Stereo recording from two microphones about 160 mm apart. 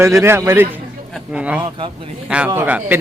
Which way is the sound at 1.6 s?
30° right (ahead or behind).